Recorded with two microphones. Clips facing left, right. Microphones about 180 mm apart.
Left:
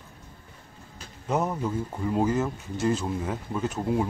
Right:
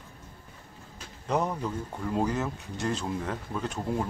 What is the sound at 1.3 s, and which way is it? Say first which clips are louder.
Speech: left 2 dB; 5° left (ahead or behind).